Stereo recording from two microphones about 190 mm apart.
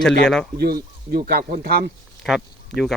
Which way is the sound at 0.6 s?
55° right (ahead or behind).